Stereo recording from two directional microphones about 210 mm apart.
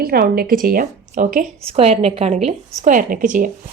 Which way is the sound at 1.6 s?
30° right (ahead or behind).